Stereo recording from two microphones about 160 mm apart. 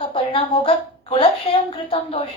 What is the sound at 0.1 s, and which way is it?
Speech, 35° left (ahead or behind).